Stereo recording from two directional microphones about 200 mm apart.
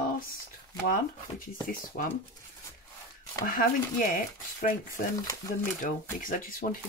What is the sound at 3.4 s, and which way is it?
Speech, 45° left (ahead or behind).